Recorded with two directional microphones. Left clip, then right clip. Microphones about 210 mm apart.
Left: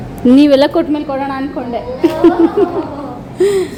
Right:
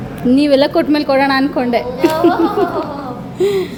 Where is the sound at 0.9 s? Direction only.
15° right (ahead or behind).